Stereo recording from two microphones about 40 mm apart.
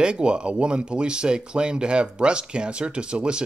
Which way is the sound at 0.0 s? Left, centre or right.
Right.